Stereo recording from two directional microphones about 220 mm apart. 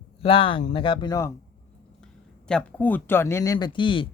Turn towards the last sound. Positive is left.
turn(degrees=20)  # may be behind; listen again after turning